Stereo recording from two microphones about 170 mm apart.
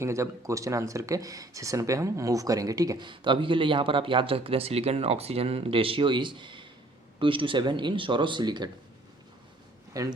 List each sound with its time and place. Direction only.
0.0 s speech: 15° right (ahead or behind)
9.9 s a man's voice: 20° right (ahead or behind)